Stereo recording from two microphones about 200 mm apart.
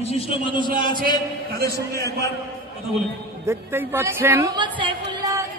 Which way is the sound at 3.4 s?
10° right (ahead or behind).